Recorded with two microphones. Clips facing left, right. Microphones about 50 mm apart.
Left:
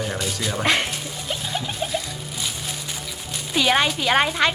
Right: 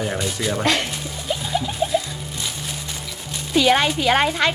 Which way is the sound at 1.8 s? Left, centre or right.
Centre.